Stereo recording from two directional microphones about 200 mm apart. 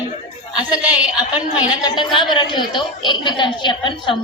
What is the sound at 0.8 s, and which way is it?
Speech, 5° right (ahead or behind).